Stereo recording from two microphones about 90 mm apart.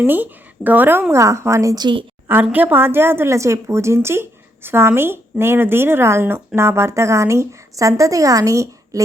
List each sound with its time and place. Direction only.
0.0 s speech: 20° right (ahead or behind)
1.1 s a woman's voice: 35° right (ahead or behind)
1.7 s a woman's voice: 55° right (ahead or behind)
2.2 s a woman's voice: 20° right (ahead or behind); by 9.0 s 35° right (ahead or behind)